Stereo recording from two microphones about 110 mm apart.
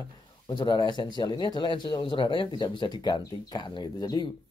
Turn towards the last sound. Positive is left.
turn(degrees=35)  # may be behind; listen again after turning